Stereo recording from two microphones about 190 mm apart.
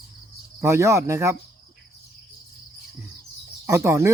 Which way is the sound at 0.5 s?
15° right (ahead or behind).